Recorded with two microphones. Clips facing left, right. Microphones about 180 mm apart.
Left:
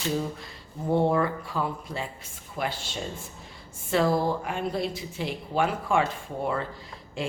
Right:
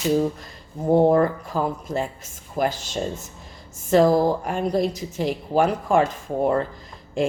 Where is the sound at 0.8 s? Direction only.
40° right (ahead or behind).